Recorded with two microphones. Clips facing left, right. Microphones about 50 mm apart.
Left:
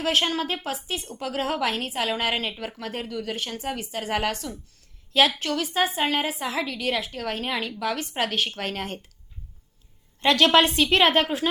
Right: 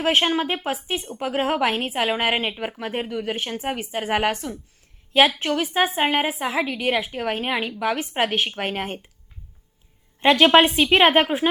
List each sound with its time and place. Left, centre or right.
0.0 s a woman's voice: right
10.2 s a woman's voice: centre